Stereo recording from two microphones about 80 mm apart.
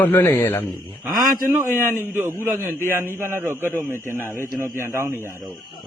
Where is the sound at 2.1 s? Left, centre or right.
Right.